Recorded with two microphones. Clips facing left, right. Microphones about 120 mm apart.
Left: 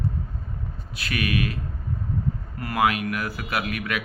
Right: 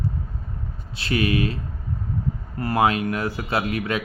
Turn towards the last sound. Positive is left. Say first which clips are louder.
# right 4 dB
turn(degrees=-30)  # may be behind; listen again after turning